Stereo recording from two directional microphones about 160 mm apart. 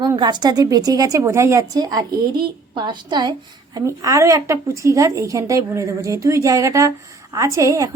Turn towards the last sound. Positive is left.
turn(degrees=-20)  # may be behind; listen again after turning